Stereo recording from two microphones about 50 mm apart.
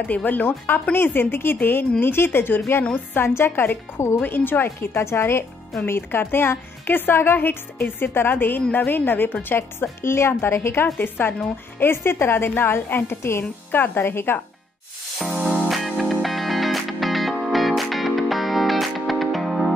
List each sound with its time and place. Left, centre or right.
0.1 s a woman's voice: left
13.4 s a woman's voice: left
15.1 s music: centre